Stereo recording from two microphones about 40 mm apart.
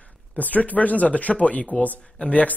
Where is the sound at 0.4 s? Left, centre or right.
Left.